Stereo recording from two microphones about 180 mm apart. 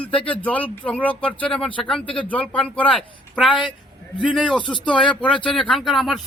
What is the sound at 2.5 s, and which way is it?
Speech, 10° left (ahead or behind).